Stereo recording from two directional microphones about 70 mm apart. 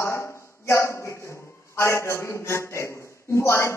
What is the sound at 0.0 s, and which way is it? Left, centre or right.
A man's voice, left.